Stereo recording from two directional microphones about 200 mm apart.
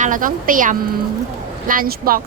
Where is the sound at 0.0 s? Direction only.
40° right (ahead or behind).